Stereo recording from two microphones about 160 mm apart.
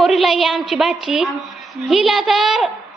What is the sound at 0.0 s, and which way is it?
A woman's voice, centre (ahead or behind).